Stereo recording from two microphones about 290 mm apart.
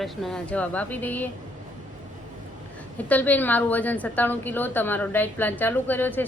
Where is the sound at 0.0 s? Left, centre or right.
Centre.